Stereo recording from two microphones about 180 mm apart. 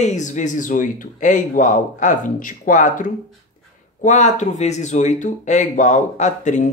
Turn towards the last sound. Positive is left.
turn(degrees=40)  # may be behind; listen again after turning